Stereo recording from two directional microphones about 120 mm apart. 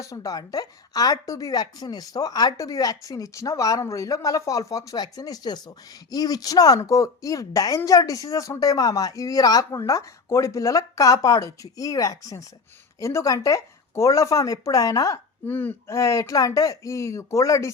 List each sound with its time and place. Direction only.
0.0 s a woman's voice: 30° left (ahead or behind)
15.4 s a woman's voice: 15° left (ahead or behind)